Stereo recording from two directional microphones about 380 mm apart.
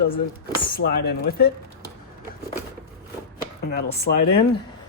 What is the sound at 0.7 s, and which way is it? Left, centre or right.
Speech, left.